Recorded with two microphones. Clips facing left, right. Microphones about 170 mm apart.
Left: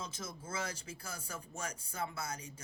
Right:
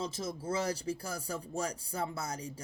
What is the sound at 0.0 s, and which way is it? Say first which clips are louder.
Speech: right 8 dB; 35° right (ahead or behind).